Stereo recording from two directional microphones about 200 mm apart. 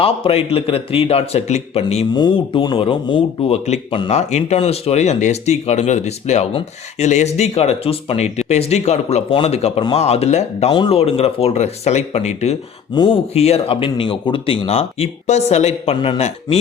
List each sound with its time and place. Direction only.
0.0 s speech: 30° left (ahead or behind)